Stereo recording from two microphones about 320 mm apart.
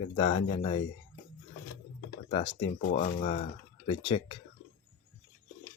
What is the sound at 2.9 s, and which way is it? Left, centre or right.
Speech, left.